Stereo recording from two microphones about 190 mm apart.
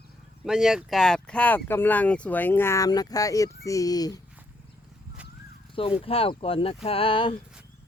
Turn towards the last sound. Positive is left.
turn(degrees=30)  # may be behind; listen again after turning